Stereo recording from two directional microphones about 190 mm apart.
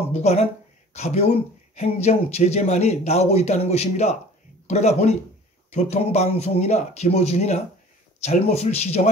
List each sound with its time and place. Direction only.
0.1 s speech: 35° left (ahead or behind)